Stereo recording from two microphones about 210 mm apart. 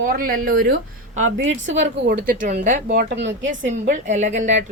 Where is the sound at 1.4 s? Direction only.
65° right (ahead or behind).